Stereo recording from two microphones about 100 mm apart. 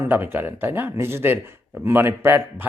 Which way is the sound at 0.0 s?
20° right (ahead or behind).